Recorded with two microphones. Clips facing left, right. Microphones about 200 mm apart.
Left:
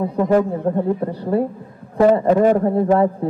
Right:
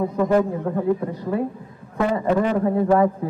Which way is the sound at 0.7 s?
30° left (ahead or behind).